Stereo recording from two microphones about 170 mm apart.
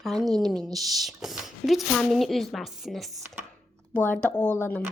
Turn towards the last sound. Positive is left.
turn(degrees=10)  # may be behind; listen again after turning